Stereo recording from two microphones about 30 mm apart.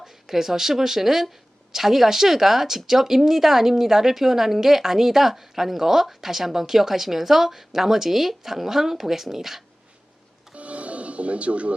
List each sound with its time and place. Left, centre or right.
0.0 s speech: centre
10.5 s music: right